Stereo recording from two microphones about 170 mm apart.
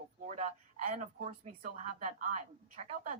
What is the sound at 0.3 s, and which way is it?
Speech, 45° right (ahead or behind).